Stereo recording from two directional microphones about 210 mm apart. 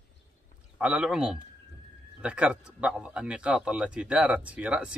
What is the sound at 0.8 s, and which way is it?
Speech, 5° right (ahead or behind).